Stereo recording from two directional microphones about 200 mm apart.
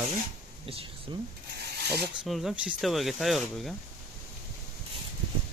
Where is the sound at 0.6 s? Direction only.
25° right (ahead or behind).